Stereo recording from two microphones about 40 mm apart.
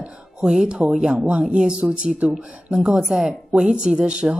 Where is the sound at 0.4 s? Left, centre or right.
Centre.